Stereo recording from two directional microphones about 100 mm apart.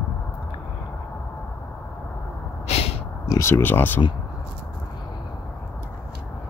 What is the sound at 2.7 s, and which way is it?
Snort, 90° left.